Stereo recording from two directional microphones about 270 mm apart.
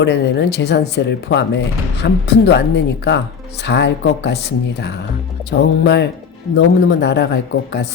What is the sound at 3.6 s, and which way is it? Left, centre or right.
Speech, left.